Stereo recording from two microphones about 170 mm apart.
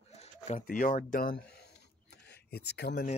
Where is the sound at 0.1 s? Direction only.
40° left (ahead or behind); by 3.1 s 75° left (ahead or behind).